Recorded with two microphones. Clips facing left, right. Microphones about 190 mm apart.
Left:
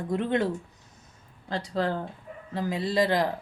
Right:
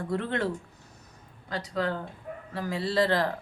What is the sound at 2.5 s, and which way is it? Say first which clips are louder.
Speech: left 2 dB; 20° left (ahead or behind).